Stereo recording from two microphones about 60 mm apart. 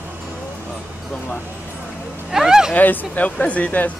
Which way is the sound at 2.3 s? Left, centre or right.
Centre.